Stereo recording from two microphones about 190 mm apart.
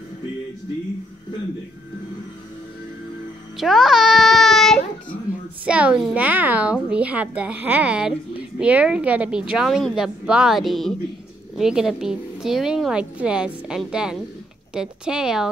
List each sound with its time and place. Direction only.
3.5 s music: centre (ahead or behind)
5.7 s a woman's voice: 5° right (ahead or behind)